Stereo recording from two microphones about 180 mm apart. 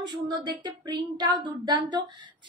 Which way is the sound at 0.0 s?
25° right (ahead or behind).